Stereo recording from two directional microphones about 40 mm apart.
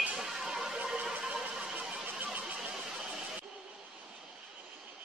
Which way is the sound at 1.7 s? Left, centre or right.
Right.